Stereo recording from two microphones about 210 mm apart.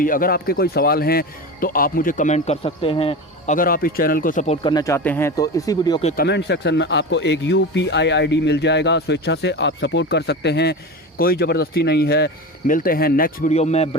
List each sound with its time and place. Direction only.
0.0 s a man's voice: 40° left (ahead or behind)
4.6 s speech: 15° left (ahead or behind)
6.2 s a man's voice: 55° left (ahead or behind); by 13.9 s 30° left (ahead or behind)